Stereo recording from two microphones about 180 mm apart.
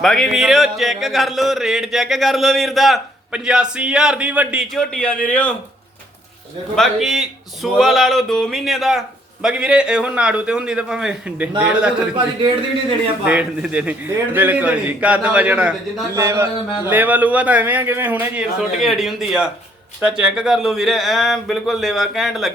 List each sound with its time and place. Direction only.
0.0 s speech: centre (ahead or behind)
6.7 s speech: centre (ahead or behind)
13.2 s a man's voice: 5° right (ahead or behind)